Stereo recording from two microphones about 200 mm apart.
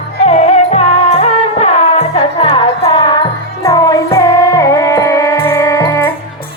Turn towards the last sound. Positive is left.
turn(degrees=15)  # may be behind; listen again after turning